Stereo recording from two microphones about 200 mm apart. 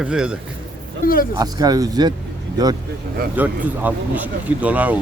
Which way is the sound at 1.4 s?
20° right (ahead or behind).